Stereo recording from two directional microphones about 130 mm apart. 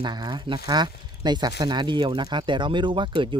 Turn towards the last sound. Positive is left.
turn(degrees=-40)  # may be behind; listen again after turning